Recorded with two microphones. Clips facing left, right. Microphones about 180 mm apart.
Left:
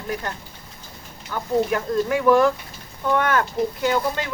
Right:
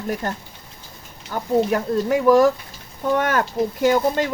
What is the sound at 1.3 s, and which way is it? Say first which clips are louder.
Speech: right 2 dB; 40° right (ahead or behind).